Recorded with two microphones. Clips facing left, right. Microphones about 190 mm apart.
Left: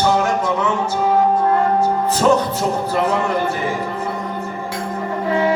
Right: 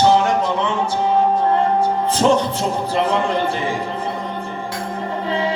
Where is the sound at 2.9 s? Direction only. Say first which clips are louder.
Right 2 dB; 30° right (ahead or behind).